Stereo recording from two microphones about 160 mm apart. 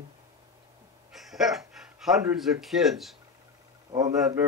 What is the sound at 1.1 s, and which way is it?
Speech, centre (ahead or behind).